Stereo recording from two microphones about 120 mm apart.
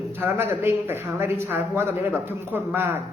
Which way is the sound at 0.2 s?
15° right (ahead or behind).